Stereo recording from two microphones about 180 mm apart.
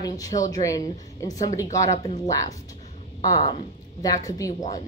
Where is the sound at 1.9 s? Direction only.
40° left (ahead or behind).